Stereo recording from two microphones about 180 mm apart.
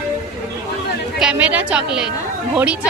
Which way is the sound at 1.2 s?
5° right (ahead or behind).